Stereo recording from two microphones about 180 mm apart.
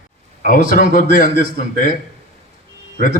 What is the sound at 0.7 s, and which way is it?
A man's voice, 50° left (ahead or behind).